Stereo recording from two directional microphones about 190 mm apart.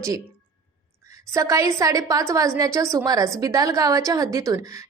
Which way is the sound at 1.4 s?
15° right (ahead or behind).